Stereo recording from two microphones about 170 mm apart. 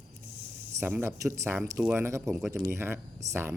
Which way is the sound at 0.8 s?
15° right (ahead or behind).